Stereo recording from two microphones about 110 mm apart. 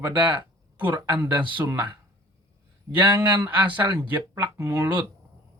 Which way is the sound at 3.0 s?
20° right (ahead or behind).